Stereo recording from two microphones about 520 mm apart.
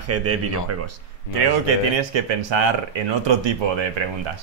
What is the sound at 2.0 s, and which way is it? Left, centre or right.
Speech, right.